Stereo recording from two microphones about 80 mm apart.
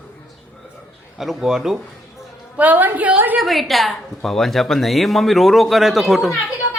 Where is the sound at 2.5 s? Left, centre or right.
Right.